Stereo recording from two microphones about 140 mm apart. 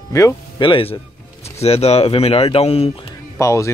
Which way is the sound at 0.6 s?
40° left (ahead or behind).